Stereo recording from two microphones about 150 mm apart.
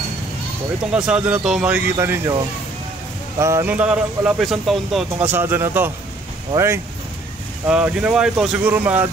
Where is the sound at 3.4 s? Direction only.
20° right (ahead or behind); by 5.0 s centre (ahead or behind).